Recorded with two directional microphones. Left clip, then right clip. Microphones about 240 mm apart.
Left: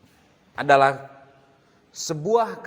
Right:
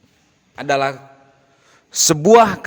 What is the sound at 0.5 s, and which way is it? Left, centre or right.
Speech, centre.